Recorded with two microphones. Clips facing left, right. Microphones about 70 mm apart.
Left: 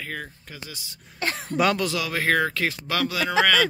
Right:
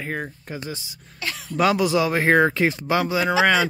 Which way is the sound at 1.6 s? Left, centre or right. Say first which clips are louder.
Right 3 dB; centre.